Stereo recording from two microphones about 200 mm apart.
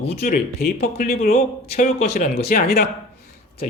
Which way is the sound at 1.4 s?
30° left (ahead or behind).